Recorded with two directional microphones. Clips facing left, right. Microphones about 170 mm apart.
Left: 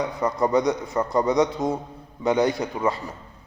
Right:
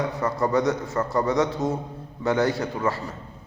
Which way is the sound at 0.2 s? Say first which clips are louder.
Left 2 dB; 15° left (ahead or behind).